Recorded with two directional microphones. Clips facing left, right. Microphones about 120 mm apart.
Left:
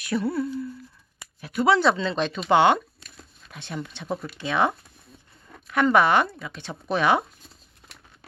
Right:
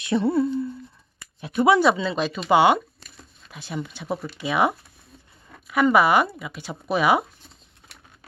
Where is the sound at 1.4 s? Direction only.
20° right (ahead or behind).